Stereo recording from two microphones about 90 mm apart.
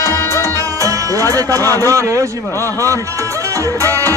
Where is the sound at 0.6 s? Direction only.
40° right (ahead or behind).